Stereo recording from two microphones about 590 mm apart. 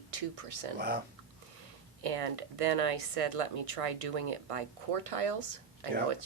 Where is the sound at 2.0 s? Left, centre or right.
Right.